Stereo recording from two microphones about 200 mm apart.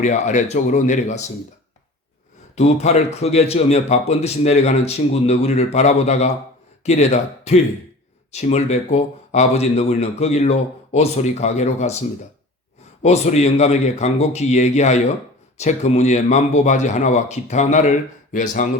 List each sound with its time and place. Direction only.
0.0 s speech: 35° left (ahead or behind)
2.6 s speech: 35° left (ahead or behind)